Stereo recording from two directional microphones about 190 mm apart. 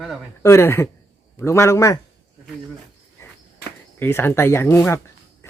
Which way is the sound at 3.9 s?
10° left (ahead or behind).